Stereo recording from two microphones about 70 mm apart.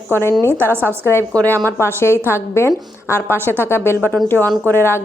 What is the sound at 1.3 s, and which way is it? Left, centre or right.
Speech, left.